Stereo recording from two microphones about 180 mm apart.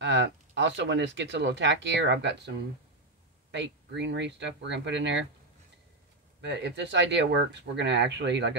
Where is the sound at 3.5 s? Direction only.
75° right (ahead or behind).